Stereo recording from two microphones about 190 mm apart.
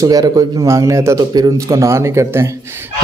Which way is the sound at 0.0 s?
15° right (ahead or behind).